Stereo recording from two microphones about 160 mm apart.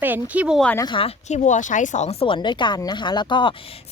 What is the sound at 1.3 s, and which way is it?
Speech, 50° left (ahead or behind).